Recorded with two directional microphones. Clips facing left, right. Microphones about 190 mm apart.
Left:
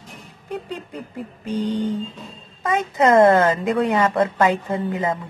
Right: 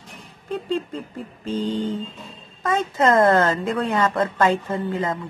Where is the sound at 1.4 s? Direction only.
15° left (ahead or behind).